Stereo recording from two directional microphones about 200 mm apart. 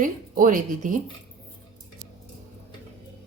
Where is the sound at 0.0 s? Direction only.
40° right (ahead or behind).